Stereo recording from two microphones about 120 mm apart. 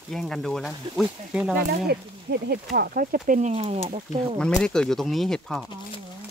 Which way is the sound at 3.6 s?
60° right (ahead or behind).